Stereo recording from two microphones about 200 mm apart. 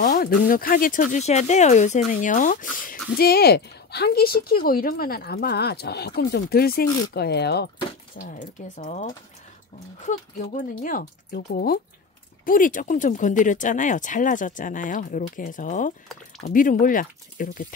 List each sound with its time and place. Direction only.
0.0 s speech: 45° left (ahead or behind)
8.2 s speech: 40° left (ahead or behind)